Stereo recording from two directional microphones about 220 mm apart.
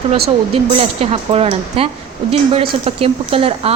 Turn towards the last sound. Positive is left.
turn(degrees=-25)  # may be behind; listen again after turning